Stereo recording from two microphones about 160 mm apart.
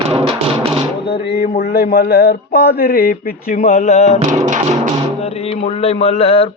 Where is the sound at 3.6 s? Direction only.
45° left (ahead or behind).